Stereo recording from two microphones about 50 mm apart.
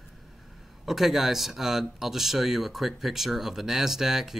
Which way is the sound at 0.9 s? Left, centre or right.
Centre.